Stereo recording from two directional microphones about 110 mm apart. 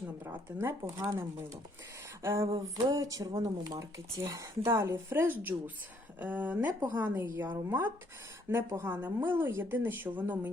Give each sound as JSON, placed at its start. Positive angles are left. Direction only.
{"t": 0.3, "sound": "speech", "side_deg": -25}
{"t": 2.2, "sound": "speech", "side_deg": -25}